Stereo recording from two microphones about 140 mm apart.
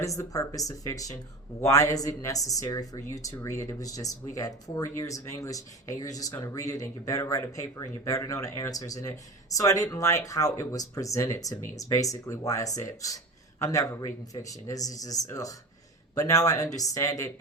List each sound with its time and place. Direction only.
0.0 s speech: 25° left (ahead or behind)